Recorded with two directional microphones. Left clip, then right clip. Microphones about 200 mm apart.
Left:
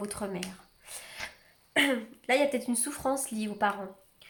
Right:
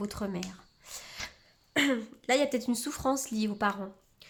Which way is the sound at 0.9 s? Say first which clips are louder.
Even; 45° right (ahead or behind).